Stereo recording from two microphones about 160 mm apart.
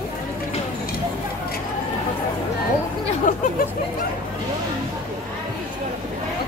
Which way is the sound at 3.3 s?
50° left (ahead or behind).